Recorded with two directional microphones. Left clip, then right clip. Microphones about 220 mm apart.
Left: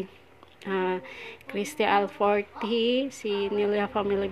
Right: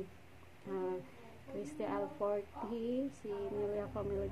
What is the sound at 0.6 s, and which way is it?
A woman's voice, 45° left (ahead or behind).